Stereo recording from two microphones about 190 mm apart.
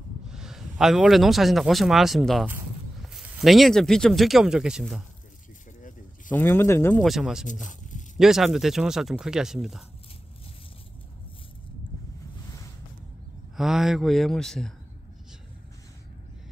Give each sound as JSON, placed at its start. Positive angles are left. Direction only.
{"t": 0.3, "sound": "a man's voice", "side_deg": -5}
{"t": 5.8, "sound": "a sound", "side_deg": 45}
{"t": 6.3, "sound": "speech", "side_deg": 10}
{"t": 7.0, "sound": "speech", "side_deg": 0}
{"t": 13.6, "sound": "speech", "side_deg": 0}